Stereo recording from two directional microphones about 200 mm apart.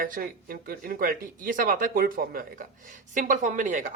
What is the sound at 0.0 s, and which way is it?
Speech, 45° right (ahead or behind).